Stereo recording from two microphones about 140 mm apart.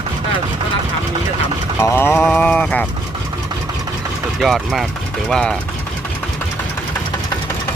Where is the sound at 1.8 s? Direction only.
20° left (ahead or behind).